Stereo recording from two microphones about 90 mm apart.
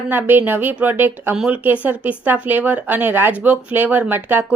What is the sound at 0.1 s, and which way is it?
Speech, 20° right (ahead or behind).